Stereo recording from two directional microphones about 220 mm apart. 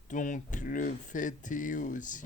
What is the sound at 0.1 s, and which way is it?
Speech, 35° left (ahead or behind).